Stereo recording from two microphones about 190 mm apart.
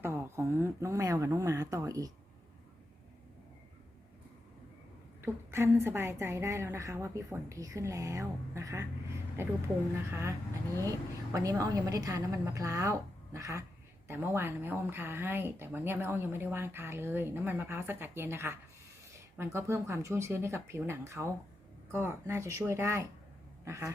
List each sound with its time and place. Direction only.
0.0 s speech: 10° right (ahead or behind)
5.2 s speech: 15° right (ahead or behind)
23.6 s a sound: 15° right (ahead or behind)